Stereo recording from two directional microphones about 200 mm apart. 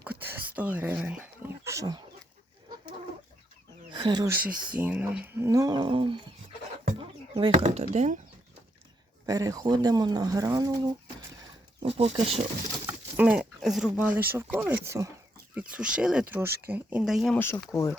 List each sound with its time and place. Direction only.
0.0 s speech: 10° right (ahead or behind)
3.9 s speech: 20° right (ahead or behind)
4.7 s speech: 5° right (ahead or behind); by 6.1 s 25° right (ahead or behind)
7.0 s a sound: 25° right (ahead or behind)
7.5 s speech: 35° right (ahead or behind)
9.2 s speech: 20° right (ahead or behind)
11.8 s speech: 30° right (ahead or behind)
12.8 s speech: 5° right (ahead or behind)
17.3 s speech: 10° left (ahead or behind)